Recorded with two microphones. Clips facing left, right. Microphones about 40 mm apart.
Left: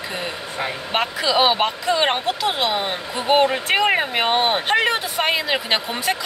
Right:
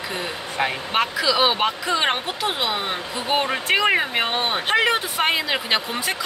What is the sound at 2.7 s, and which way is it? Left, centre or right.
Speech, centre.